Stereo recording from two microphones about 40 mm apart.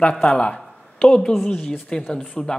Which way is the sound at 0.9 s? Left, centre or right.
Left.